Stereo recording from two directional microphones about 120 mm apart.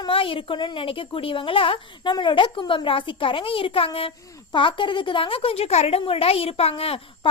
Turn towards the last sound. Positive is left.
turn(degrees=55)  # may be behind; listen again after turning